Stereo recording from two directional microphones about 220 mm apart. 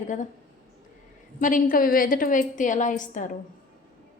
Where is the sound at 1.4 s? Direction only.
40° left (ahead or behind).